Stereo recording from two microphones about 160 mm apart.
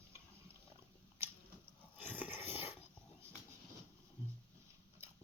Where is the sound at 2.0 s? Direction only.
10° right (ahead or behind).